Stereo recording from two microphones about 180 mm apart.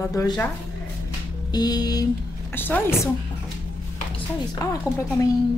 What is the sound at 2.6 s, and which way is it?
Speech, 10° left (ahead or behind).